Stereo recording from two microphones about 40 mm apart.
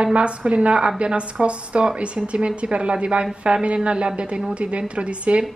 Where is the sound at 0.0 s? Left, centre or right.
Right.